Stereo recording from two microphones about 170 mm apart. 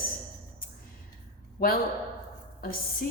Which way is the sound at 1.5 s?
60° left (ahead or behind).